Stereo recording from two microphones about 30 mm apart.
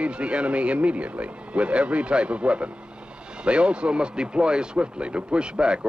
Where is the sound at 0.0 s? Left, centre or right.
Right.